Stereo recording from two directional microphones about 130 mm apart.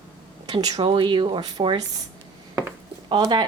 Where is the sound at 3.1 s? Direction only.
35° right (ahead or behind).